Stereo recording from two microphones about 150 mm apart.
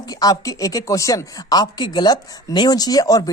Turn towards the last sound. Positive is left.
turn(degrees=25)  # may be behind; listen again after turning